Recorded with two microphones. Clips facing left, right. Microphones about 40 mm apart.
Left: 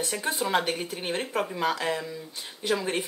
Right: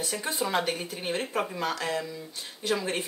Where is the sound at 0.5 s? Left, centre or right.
Left.